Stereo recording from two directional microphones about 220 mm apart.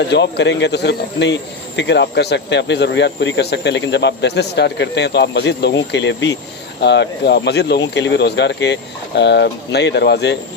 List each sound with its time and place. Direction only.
0.1 s speech: 50° left (ahead or behind)